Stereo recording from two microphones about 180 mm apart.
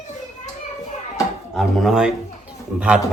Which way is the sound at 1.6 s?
Centre (ahead or behind).